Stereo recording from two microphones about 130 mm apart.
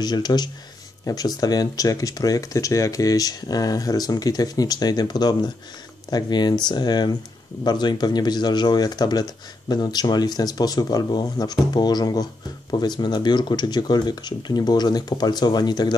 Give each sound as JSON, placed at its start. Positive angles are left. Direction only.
{"t": 0.0, "sound": "speech", "side_deg": 35}